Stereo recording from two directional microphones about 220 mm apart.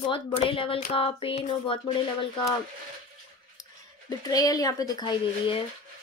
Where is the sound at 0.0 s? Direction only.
25° left (ahead or behind).